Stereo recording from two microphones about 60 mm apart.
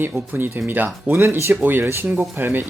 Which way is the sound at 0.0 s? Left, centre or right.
Right.